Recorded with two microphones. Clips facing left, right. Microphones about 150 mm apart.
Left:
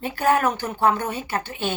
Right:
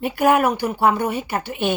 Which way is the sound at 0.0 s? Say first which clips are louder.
Right 3 dB; 15° right (ahead or behind).